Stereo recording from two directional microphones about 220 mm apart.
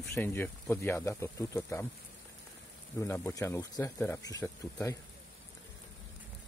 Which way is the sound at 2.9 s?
10° left (ahead or behind).